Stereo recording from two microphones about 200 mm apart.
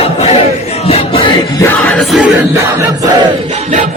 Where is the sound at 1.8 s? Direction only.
5° left (ahead or behind); by 3.1 s 15° right (ahead or behind).